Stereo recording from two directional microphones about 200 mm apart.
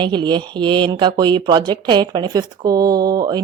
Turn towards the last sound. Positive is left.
turn(degrees=-20)  # may be behind; listen again after turning